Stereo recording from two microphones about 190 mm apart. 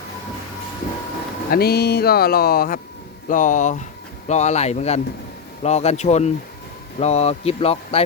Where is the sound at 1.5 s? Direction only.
55° left (ahead or behind).